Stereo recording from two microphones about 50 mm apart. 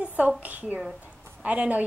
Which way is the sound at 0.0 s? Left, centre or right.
Right.